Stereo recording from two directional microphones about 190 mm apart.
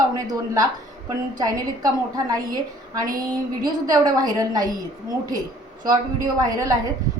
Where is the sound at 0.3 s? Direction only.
20° right (ahead or behind).